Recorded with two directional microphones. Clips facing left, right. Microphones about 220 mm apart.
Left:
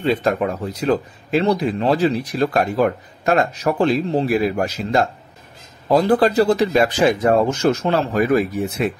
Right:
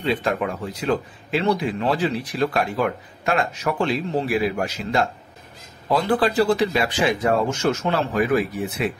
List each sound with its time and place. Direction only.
0.0 s speech: 40° left (ahead or behind)